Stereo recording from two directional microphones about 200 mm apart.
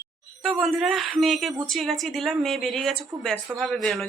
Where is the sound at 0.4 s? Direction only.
Centre (ahead or behind).